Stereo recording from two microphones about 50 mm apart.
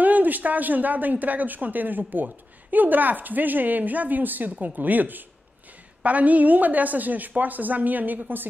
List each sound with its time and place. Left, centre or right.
0.0 s speech: right